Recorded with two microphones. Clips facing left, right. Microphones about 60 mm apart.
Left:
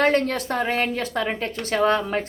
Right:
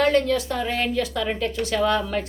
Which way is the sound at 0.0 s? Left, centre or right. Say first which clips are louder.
Right 1 dB; left.